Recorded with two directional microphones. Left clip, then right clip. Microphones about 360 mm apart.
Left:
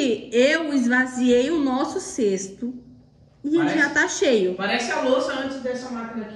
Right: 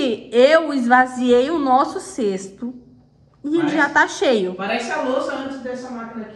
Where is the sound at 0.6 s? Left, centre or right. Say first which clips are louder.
Right 7 dB; centre.